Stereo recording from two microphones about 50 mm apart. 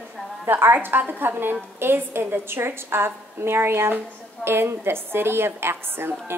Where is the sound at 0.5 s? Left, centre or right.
Right.